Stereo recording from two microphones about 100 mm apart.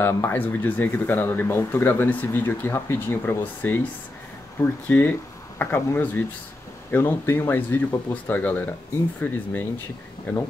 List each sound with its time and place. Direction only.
0.0 s speech: 25° left (ahead or behind)